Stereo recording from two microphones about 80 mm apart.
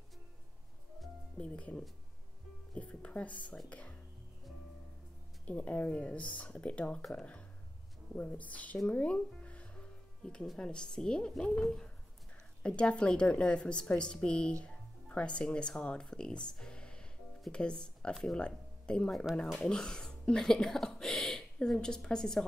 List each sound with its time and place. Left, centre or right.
1.4 s speech: centre
5.4 s speech: centre